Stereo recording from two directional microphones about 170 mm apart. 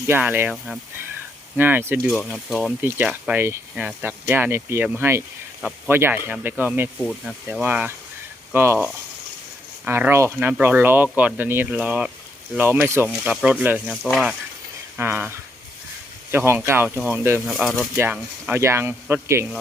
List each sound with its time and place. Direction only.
0.1 s speech: 10° right (ahead or behind)
2.0 s speech: centre (ahead or behind)
7.0 s speech: centre (ahead or behind)
13.9 s speech: centre (ahead or behind)
14.9 s speech: 10° right (ahead or behind)
16.3 s speech: 15° right (ahead or behind)
17.5 s speech: 5° right (ahead or behind)